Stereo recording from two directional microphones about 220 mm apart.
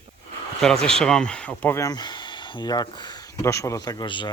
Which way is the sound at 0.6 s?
Centre (ahead or behind).